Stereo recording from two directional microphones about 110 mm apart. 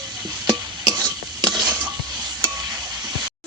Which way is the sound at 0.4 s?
35° right (ahead or behind).